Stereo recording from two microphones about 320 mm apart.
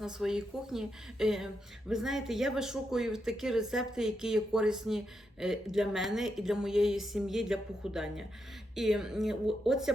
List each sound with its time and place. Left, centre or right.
0.0 s speech: centre